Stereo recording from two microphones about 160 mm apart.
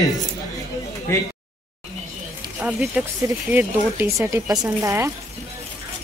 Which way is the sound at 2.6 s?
10° right (ahead or behind).